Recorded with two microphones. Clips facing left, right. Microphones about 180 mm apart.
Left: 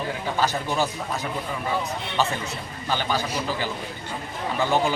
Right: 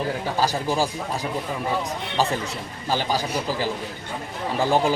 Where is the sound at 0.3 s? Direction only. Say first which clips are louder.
Right 1 dB; 35° right (ahead or behind).